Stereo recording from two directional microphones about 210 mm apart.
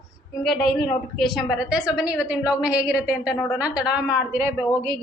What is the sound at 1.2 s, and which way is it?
A woman's voice, centre (ahead or behind).